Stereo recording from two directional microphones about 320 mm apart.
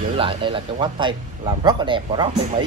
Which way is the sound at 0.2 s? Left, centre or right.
Centre.